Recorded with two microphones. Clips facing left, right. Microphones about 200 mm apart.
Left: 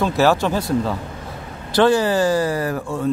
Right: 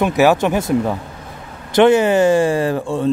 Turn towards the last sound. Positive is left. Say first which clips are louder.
# right 4 dB
turn(degrees=-30)  # may be behind; listen again after turning